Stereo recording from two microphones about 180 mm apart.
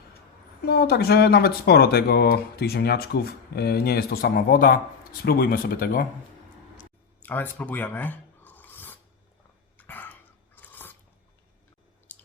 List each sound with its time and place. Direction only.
0.6 s speech: 60° left (ahead or behind)
7.2 s filing: 10° left (ahead or behind)
9.7 s dog: 10° left (ahead or behind)
12.1 s a sound: 10° left (ahead or behind)